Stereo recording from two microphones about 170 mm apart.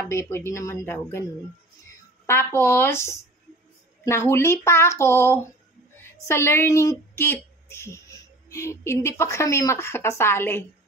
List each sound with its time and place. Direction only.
0.1 s a woman's voice: 15° left (ahead or behind)
2.2 s a woman's voice: 15° left (ahead or behind)